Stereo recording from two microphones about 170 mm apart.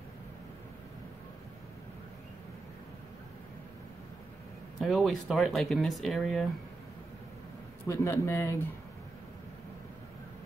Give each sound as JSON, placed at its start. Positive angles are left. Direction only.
{"t": 4.7, "sound": "speech", "side_deg": 0}
{"t": 7.8, "sound": "a man's voice", "side_deg": 15}